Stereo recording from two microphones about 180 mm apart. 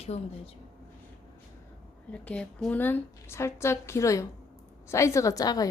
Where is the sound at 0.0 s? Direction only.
35° left (ahead or behind).